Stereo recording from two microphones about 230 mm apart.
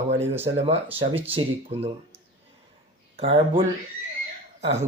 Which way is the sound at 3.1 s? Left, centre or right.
Right.